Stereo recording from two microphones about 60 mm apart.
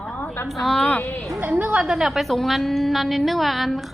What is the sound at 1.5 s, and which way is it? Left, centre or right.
Speech, right.